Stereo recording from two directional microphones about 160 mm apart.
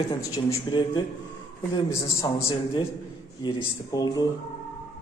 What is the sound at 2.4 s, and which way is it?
A man's voice, 35° left (ahead or behind).